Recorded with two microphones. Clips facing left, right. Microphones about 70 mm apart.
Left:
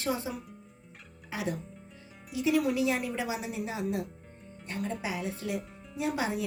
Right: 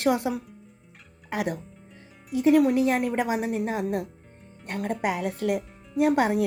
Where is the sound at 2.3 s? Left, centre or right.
Right.